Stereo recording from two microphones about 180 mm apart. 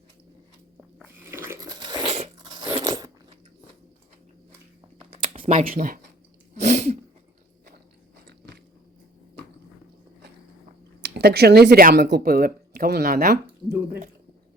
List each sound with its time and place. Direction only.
1.0 s biting: 15° right (ahead or behind)
2.7 s crunch: 25° right (ahead or behind)
4.9 s a sound: 30° right (ahead or behind)
5.6 s speech: 50° right (ahead or behind)
6.5 s sneeze: 40° right (ahead or behind)
8.1 s biting: 65° right (ahead or behind)
11.0 s speech: 60° right (ahead or behind)